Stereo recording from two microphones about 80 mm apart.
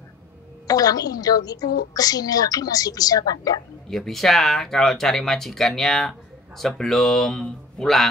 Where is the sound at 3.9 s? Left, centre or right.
Centre.